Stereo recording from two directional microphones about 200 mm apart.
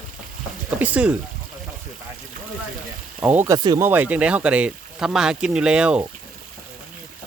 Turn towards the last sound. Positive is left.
turn(degrees=-5)  # may be behind; listen again after turning